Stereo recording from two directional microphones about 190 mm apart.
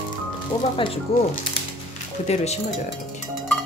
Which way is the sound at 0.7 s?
25° left (ahead or behind).